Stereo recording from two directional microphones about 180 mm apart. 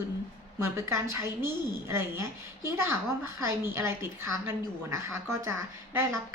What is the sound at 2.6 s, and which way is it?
A woman's voice, 15° right (ahead or behind).